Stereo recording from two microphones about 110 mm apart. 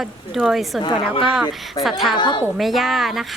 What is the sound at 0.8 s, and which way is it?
Speech, 45° left (ahead or behind).